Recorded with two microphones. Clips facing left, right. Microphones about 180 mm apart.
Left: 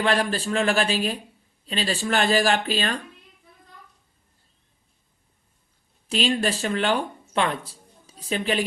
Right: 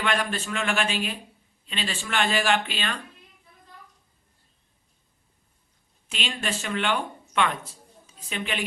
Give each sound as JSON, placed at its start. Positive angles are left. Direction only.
{"t": 0.0, "sound": "speech", "side_deg": 35}
{"t": 6.1, "sound": "a woman's voice", "side_deg": 35}